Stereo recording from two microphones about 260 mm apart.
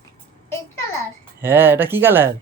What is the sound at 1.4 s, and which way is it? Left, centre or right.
Speech, centre.